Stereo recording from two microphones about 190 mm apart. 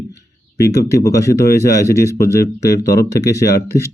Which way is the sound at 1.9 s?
15° left (ahead or behind).